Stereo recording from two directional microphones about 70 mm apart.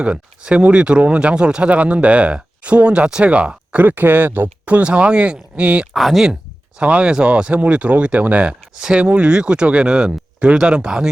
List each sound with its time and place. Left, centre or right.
0.0 s speech: centre
5.9 s speech: centre
6.7 s speech: centre